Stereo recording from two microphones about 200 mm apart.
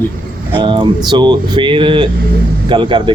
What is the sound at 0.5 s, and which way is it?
Speech, 25° right (ahead or behind).